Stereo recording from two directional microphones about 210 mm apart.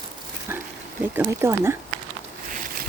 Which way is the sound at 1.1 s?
10° right (ahead or behind).